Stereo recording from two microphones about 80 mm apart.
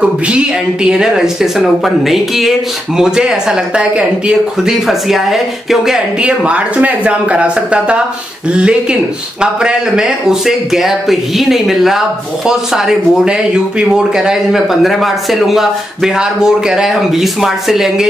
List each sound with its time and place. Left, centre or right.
0.0 s speech: centre
6.2 s speech: centre